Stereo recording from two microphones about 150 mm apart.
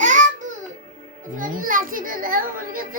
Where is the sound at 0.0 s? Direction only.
60° right (ahead or behind).